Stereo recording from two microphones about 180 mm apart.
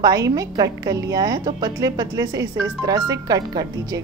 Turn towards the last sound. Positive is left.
turn(degrees=-20)  # may be behind; listen again after turning